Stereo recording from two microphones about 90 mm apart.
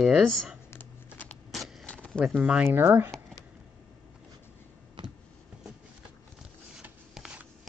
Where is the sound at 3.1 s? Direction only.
5° left (ahead or behind).